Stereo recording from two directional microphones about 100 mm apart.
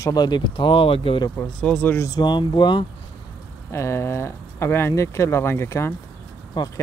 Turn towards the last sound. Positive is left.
turn(degrees=45)  # may be behind; listen again after turning